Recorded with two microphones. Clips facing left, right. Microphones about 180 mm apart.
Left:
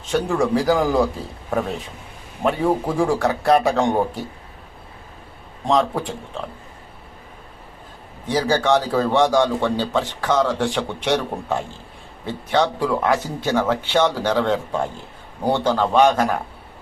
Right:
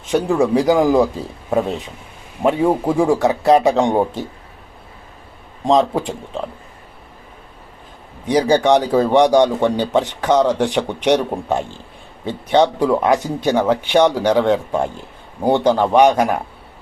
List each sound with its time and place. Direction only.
0.1 s a man's voice: 20° right (ahead or behind)
5.6 s speech: 20° right (ahead or behind)
8.3 s a man's voice: 15° right (ahead or behind)